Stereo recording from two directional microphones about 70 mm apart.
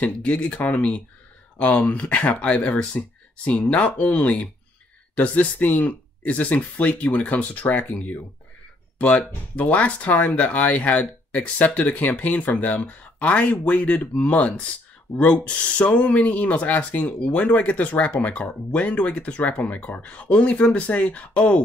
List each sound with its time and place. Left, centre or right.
0.0 s speech: centre
9.6 s speech: left